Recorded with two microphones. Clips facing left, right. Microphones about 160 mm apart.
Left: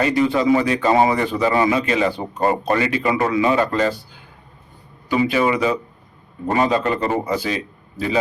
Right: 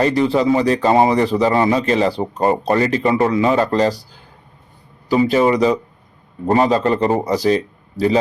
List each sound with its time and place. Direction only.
0.0 s speech: 35° right (ahead or behind)